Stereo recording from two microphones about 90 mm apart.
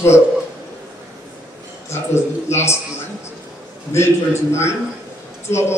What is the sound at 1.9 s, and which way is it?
Speech, 30° left (ahead or behind).